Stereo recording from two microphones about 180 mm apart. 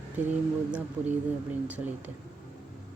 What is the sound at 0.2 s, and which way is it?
Speech, 10° right (ahead or behind).